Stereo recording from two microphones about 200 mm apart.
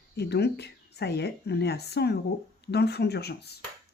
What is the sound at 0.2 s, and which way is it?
Speech, 55° left (ahead or behind).